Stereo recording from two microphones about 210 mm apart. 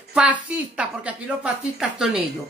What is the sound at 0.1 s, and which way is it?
A woman's voice, 5° right (ahead or behind).